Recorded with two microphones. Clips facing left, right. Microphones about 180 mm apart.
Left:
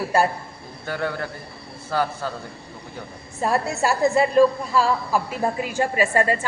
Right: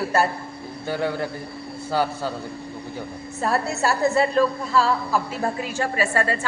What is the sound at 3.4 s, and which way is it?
A woman's voice, 15° left (ahead or behind).